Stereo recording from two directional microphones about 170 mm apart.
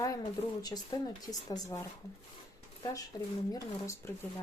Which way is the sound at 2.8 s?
20° left (ahead or behind).